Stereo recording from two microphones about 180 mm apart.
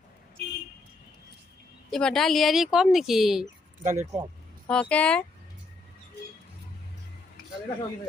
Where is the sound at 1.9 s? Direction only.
Centre (ahead or behind).